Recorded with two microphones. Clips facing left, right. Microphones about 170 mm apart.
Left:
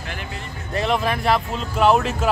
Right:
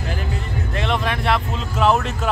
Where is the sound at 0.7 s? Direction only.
Centre (ahead or behind).